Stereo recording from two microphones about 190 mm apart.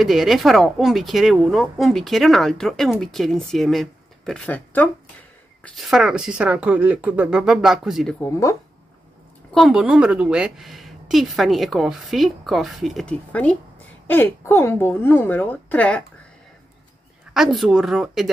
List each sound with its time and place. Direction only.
0.0 s a woman's voice: centre (ahead or behind)
8.2 s a woman's voice: 15° left (ahead or behind)
9.5 s a woman's voice: centre (ahead or behind)
17.3 s a woman's voice: centre (ahead or behind)